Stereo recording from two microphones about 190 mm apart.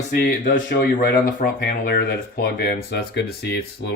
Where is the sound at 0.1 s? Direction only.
50° left (ahead or behind).